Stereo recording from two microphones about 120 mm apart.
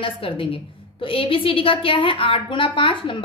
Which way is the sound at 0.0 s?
50° left (ahead or behind).